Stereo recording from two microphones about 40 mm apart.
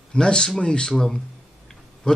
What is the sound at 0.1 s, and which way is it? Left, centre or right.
Speech, left.